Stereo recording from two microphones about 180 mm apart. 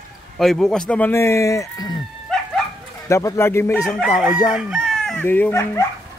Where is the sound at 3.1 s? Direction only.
15° left (ahead or behind).